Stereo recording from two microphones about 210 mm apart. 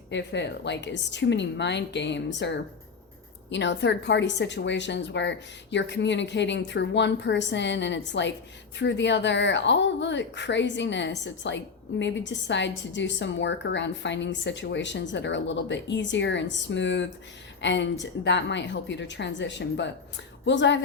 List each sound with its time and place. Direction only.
0.1 s speech: 55° left (ahead or behind)